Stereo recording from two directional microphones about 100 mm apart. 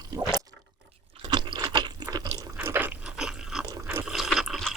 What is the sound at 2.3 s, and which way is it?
Water, 25° right (ahead or behind).